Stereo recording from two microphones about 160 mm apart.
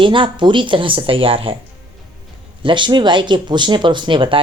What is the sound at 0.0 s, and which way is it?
Speech, 30° right (ahead or behind).